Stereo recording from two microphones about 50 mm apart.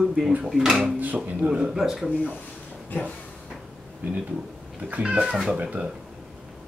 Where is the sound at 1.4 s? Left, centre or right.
Right.